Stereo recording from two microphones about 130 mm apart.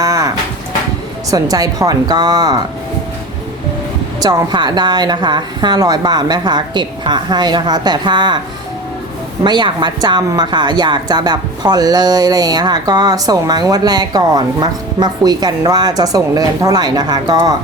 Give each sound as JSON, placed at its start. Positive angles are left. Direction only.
{"t": 0.0, "sound": "a sound", "side_deg": -25}
{"t": 1.3, "sound": "speech", "side_deg": -30}
{"t": 4.2, "sound": "a woman's voice", "side_deg": -30}
{"t": 9.4, "sound": "a woman's voice", "side_deg": -35}